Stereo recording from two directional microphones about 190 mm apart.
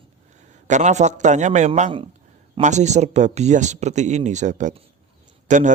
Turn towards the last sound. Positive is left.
turn(degrees=-40)  # may be behind; listen again after turning